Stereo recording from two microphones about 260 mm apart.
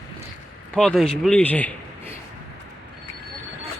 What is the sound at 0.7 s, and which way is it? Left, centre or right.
A man's voice, centre.